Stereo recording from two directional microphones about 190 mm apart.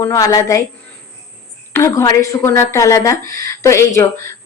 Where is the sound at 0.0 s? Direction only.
15° left (ahead or behind).